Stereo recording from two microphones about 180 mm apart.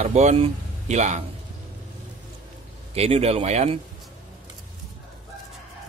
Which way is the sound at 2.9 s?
35° right (ahead or behind).